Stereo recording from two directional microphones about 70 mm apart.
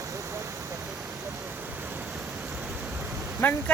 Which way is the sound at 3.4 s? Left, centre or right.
Left.